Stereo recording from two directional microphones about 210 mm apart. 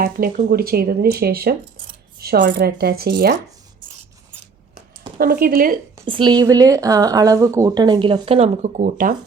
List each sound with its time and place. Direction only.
0.0 s speech: 45° right (ahead or behind)
5.1 s speech: 45° right (ahead or behind)
6.1 s speech: 20° right (ahead or behind); by 9.1 s 40° right (ahead or behind)